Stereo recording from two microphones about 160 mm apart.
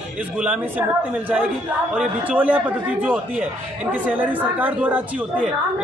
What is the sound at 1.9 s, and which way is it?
A woman's voice, 10° right (ahead or behind).